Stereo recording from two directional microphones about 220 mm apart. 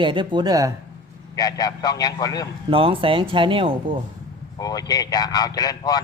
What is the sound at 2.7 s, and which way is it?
A man's voice, 25° right (ahead or behind).